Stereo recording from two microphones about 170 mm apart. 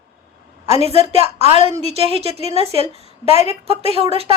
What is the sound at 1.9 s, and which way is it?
Speech, 35° right (ahead or behind).